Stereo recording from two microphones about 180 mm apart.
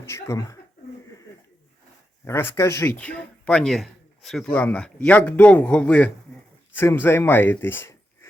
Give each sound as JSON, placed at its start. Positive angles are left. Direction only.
{"t": 0.0, "sound": "speech", "side_deg": 15}
{"t": 2.2, "sound": "speech", "side_deg": 15}